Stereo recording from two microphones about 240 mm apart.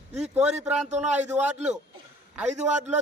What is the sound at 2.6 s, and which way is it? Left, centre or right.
Speech, right.